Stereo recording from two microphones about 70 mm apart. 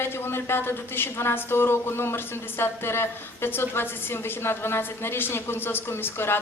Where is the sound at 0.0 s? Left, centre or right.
Left.